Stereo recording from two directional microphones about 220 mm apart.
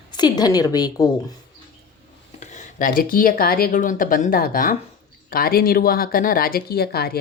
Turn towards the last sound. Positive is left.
turn(degrees=45)  # may be behind; listen again after turning